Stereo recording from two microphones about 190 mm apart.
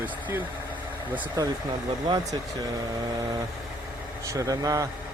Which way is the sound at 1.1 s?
20° right (ahead or behind).